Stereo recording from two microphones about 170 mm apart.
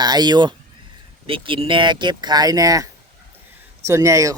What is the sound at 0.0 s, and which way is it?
Speech, 25° right (ahead or behind).